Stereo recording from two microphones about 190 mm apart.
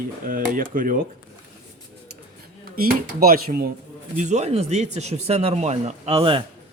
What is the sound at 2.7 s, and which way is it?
Speech, 50° right (ahead or behind).